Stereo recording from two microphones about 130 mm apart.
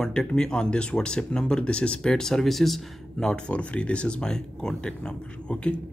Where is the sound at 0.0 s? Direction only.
5° left (ahead or behind).